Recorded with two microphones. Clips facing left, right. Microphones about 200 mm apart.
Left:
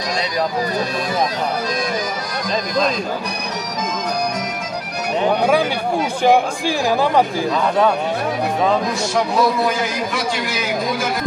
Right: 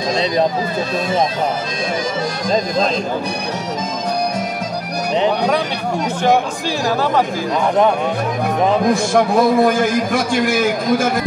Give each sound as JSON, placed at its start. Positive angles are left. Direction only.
{"t": 8.8, "sound": "a man's voice", "side_deg": -50}